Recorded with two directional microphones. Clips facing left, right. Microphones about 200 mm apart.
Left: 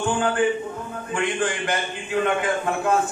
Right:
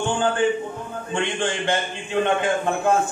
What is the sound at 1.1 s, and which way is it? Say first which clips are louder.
A man's voice: even; 25° right (ahead or behind).